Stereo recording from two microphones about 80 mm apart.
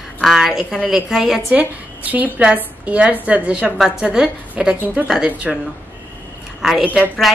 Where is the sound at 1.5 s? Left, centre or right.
Centre.